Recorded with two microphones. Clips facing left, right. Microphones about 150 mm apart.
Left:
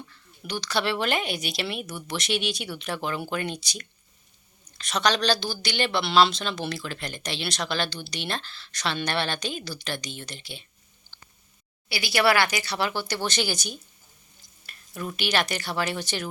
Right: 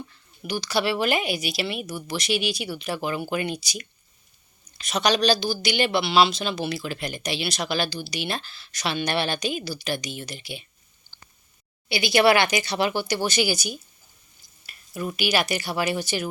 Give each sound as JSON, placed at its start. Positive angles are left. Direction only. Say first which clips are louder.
{"t": 0.4, "sound": "speech", "louder": "right 3 dB", "side_deg": -5}
{"t": 11.1, "sound": "a sound", "louder": "left 1 dB", "side_deg": -10}
{"t": 11.9, "sound": "speech", "louder": "right 4 dB", "side_deg": -20}